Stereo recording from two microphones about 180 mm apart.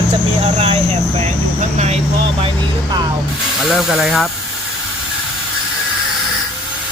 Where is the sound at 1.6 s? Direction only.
40° right (ahead or behind).